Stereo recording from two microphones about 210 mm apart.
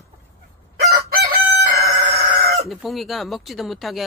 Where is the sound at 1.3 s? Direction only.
55° right (ahead or behind).